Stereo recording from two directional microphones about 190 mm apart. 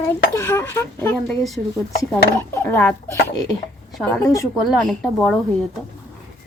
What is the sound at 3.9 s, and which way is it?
Speech, 5° left (ahead or behind).